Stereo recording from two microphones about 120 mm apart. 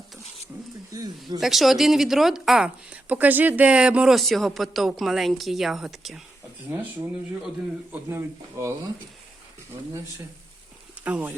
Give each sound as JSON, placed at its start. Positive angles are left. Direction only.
{"t": 0.9, "sound": "speech", "side_deg": -30}
{"t": 1.4, "sound": "speech", "side_deg": 0}
{"t": 7.9, "sound": "speech", "side_deg": -20}
{"t": 11.0, "sound": "speech", "side_deg": -15}